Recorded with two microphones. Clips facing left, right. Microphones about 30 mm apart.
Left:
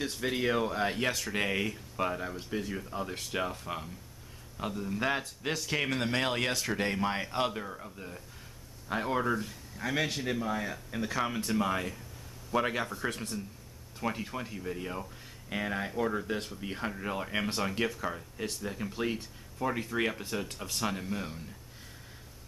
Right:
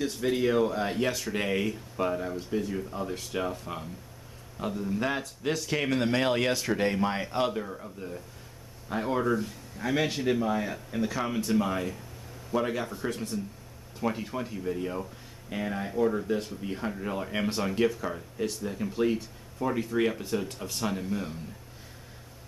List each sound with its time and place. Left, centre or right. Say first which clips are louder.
0.0 s speech: right 4 dB; centre
12.5 s speech: right 1 dB; centre
13.9 s speech: right 4 dB; centre
15.5 s speech: right 2 dB; centre